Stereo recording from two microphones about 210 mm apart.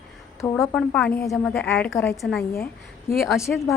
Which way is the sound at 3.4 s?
15° left (ahead or behind).